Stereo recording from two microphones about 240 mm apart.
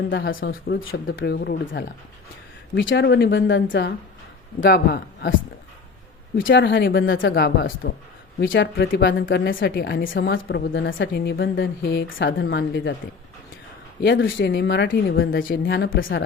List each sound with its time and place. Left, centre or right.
0.1 s speech: left
2.9 s speech: left
6.3 s speech: left
7.4 s speech: left
14.0 s speech: left
15.3 s speech: left